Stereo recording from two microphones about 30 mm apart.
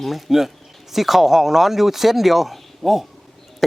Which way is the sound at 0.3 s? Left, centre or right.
Centre.